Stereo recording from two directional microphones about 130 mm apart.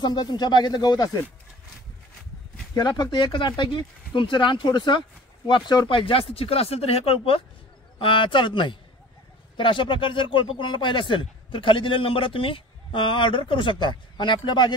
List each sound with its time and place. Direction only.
0.0 s a man's voice: 35° left (ahead or behind)
2.7 s a man's voice: 30° left (ahead or behind)